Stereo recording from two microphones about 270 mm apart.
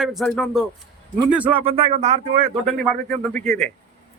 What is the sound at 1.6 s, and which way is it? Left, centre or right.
Speech, right.